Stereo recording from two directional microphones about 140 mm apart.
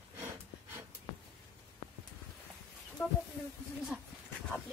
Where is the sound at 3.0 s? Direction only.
5° right (ahead or behind).